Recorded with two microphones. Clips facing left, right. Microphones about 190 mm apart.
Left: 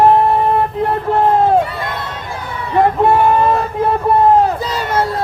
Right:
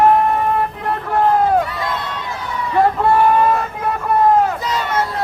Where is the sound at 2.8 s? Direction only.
25° left (ahead or behind).